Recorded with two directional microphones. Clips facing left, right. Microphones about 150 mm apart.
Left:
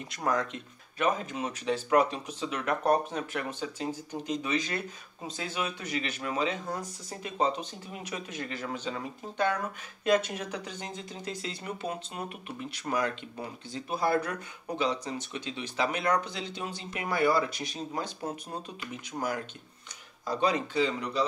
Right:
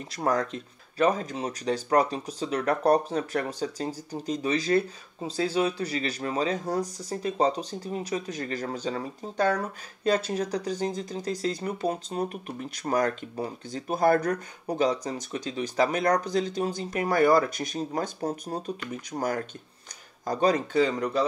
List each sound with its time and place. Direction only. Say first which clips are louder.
0.1 s speech: right 4 dB; 35° right (ahead or behind)